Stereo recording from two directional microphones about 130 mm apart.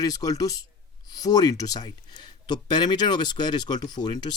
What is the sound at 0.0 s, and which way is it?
Speech, 30° left (ahead or behind).